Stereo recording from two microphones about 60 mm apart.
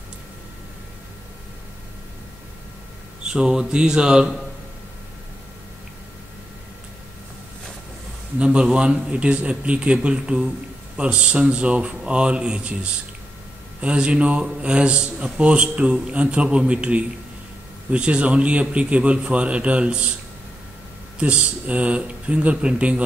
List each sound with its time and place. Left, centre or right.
3.3 s a man's voice: centre
8.4 s a man's voice: centre
21.2 s speech: right